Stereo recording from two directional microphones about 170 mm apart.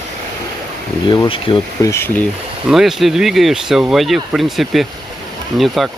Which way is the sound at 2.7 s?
Centre (ahead or behind).